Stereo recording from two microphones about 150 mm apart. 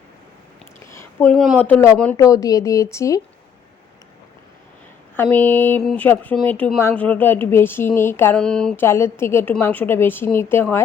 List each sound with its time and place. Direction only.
0.9 s a sound: 15° left (ahead or behind)
1.3 s a woman's voice: 5° left (ahead or behind)
2.1 s speech: 20° left (ahead or behind)
5.1 s a woman's voice: 15° left (ahead or behind)
5.8 s a woman's voice: centre (ahead or behind)
8.4 s a woman's voice: 5° left (ahead or behind)